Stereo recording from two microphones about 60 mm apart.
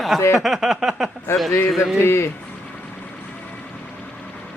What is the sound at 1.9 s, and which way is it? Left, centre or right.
Speech, left.